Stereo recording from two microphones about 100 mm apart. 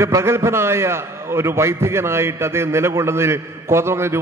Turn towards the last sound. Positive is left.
turn(degrees=-25)  # may be behind; listen again after turning